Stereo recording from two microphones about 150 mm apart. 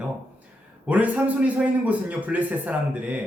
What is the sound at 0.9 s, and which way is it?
A man's voice, 10° right (ahead or behind).